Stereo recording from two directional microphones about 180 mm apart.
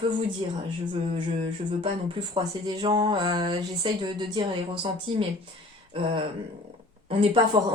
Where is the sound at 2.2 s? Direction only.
30° right (ahead or behind).